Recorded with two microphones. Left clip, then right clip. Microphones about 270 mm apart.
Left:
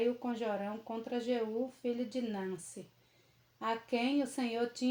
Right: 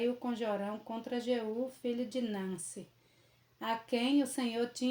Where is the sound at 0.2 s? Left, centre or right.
Right.